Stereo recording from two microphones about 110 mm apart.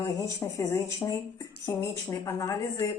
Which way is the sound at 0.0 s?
30° left (ahead or behind).